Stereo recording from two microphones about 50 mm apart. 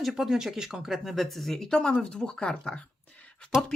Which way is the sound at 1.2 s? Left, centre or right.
Centre.